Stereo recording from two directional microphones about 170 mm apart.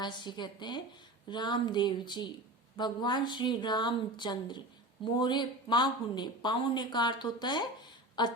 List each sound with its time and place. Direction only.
0.0 s speech: 25° left (ahead or behind)